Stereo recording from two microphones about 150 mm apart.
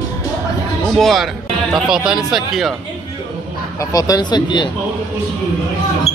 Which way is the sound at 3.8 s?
25° left (ahead or behind).